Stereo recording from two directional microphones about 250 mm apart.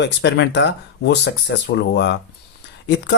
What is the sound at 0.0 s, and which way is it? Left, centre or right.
Speech, left.